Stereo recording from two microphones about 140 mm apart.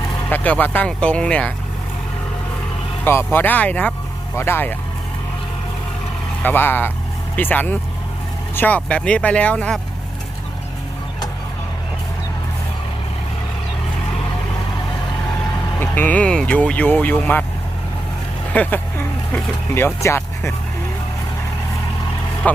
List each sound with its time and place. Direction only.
0.3 s speech: 10° left (ahead or behind)
3.0 s speech: 20° left (ahead or behind)
6.4 s speech: 15° left (ahead or behind)
15.8 s speech: 15° left (ahead or behind)
18.5 s speech: 10° left (ahead or behind)
22.4 s speech: 10° left (ahead or behind)